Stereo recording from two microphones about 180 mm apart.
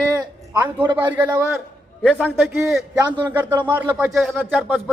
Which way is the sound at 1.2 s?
15° right (ahead or behind).